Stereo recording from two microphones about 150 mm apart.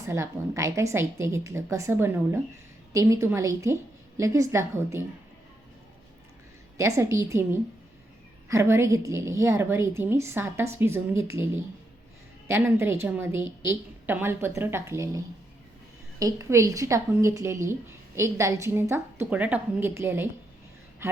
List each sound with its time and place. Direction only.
0.0 s a woman's voice: 20° right (ahead or behind)
6.7 s a woman's voice: 20° right (ahead or behind)
21.0 s a sound: 20° right (ahead or behind)